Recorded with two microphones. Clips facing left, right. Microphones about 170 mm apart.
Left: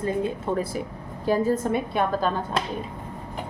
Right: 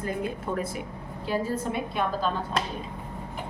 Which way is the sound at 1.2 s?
45° left (ahead or behind).